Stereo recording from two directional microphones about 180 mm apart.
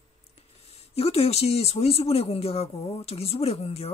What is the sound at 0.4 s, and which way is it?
Speech, 35° left (ahead or behind).